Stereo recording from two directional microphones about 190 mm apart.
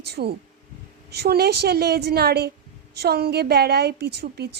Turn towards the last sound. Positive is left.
turn(degrees=-55)  # may be behind; listen again after turning